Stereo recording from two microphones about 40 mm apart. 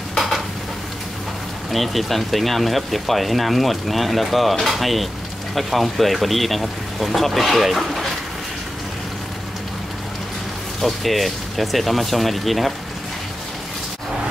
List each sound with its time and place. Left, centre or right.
1.7 s speech: centre
10.8 s speech: centre